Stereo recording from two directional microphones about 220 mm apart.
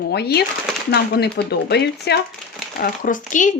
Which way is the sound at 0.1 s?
45° left (ahead or behind).